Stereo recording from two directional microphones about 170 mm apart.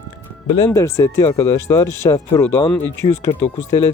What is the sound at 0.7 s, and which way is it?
Speech, 15° left (ahead or behind).